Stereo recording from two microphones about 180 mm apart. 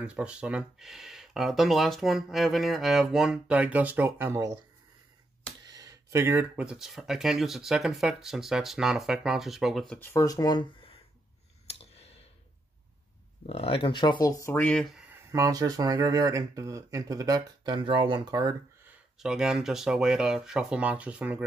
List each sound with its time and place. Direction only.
0.0 s speech: 5° right (ahead or behind)
5.7 s speech: 20° right (ahead or behind); by 9.9 s centre (ahead or behind)
9.9 s speech: 15° left (ahead or behind)
11.6 s a sound: 35° left (ahead or behind)
13.5 s speech: 30° left (ahead or behind); by 15.0 s centre (ahead or behind)
15.3 s speech: 20° right (ahead or behind)
19.1 s speech: 5° right (ahead or behind)